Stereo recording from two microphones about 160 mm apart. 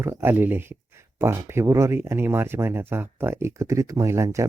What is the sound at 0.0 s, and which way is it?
Speech, 15° right (ahead or behind).